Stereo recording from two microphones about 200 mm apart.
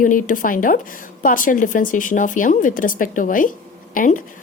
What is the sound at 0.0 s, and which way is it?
A woman's voice, 40° left (ahead or behind).